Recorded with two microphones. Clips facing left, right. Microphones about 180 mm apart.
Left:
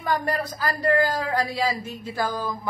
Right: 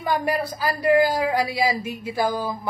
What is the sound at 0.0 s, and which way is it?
A man's voice, 10° right (ahead or behind).